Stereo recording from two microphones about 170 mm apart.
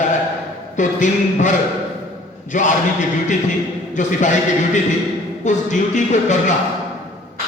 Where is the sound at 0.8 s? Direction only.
45° left (ahead or behind).